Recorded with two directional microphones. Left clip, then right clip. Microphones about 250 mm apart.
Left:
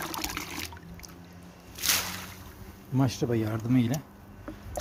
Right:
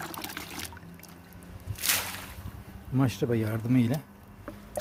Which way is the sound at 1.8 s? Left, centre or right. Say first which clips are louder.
Left 1 dB; centre.